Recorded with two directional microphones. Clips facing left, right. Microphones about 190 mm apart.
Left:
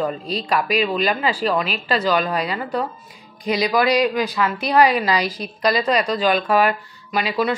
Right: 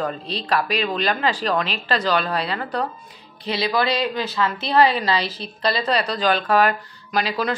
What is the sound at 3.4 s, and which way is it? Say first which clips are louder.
Speech: left 3 dB; 30° right (ahead or behind).